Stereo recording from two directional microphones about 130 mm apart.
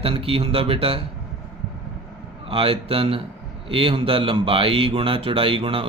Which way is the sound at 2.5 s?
45° right (ahead or behind).